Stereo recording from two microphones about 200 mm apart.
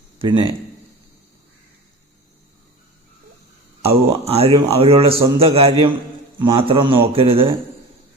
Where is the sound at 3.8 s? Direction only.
30° right (ahead or behind).